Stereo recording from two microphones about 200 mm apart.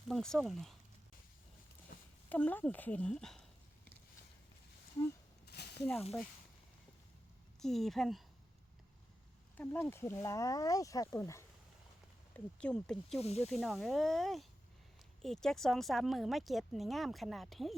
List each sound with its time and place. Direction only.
0.1 s speech: centre (ahead or behind)
2.3 s speech: 10° left (ahead or behind)
5.5 s a sound: 55° left (ahead or behind)
7.6 s speech: centre (ahead or behind)
9.6 s speech: 10° left (ahead or behind)
13.1 s speech: 30° left (ahead or behind)
13.5 s speech: centre (ahead or behind)